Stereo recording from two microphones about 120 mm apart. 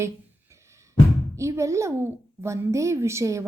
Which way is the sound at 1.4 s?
25° right (ahead or behind).